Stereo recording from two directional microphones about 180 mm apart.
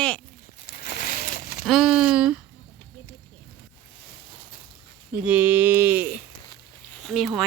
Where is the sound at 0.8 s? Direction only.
45° left (ahead or behind).